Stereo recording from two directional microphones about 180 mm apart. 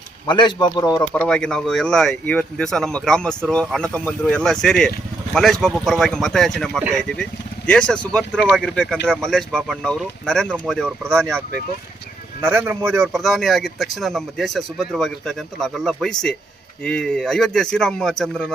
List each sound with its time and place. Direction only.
0.3 s speech: 25° left (ahead or behind)
1.1 s speech: 5° left (ahead or behind)
12.4 s speech: 10° right (ahead or behind)
13.1 s speech: centre (ahead or behind)